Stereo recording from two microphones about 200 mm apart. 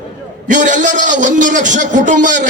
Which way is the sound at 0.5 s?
40° right (ahead or behind).